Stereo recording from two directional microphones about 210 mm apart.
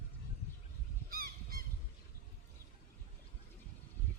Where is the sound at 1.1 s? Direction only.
45° right (ahead or behind).